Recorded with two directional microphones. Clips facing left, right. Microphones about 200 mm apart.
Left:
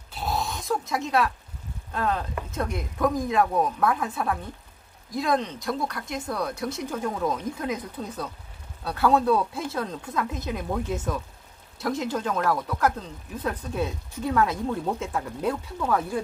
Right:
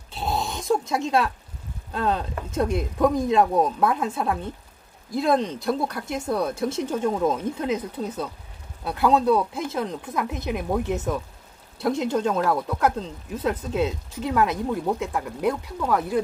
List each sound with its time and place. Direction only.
0.1 s dog: 25° right (ahead or behind)
2.0 s speech: 30° right (ahead or behind)
12.0 s speech: 25° right (ahead or behind)